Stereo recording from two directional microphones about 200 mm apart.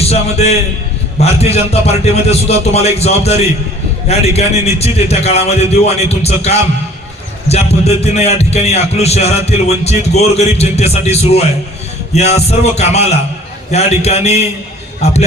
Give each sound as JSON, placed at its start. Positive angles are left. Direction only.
{"t": 0.0, "sound": "a man's voice", "side_deg": 30}